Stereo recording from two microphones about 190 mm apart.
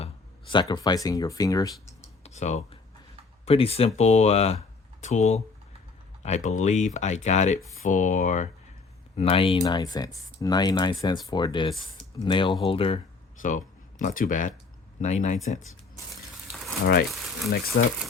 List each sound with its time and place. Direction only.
0.0 s speech: 25° left (ahead or behind)
2.2 s speech: 35° left (ahead or behind)
13.4 s speech: 45° left (ahead or behind)
16.8 s speech: 55° left (ahead or behind)